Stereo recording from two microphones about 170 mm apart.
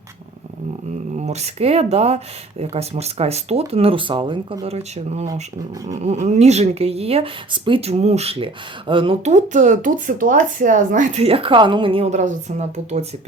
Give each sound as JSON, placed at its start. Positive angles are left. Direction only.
{"t": 1.1, "sound": "speech", "side_deg": -40}
{"t": 9.3, "sound": "speech", "side_deg": -45}